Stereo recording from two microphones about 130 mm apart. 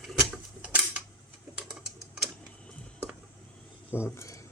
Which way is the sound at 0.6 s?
10° right (ahead or behind).